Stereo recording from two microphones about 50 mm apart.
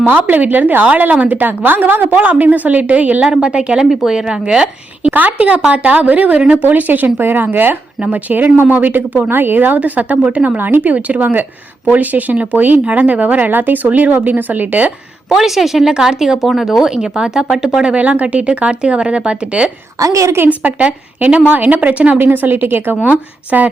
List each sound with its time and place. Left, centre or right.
0.0 s speech: right
3.8 s speech: centre; by 10.6 s right
10.6 s speech: right
15.4 s speech: centre
17.9 s speech: right
20.1 s a woman's voice: right
20.5 s speech: right
21.5 s speech: right
22.2 s speech: right